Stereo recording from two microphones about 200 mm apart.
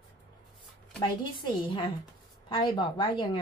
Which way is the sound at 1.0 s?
25° left (ahead or behind).